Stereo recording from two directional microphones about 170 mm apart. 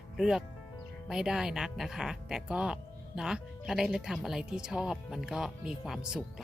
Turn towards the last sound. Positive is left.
turn(degrees=-5)  # may be behind; listen again after turning